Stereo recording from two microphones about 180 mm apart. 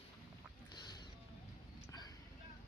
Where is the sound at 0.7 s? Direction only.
25° left (ahead or behind).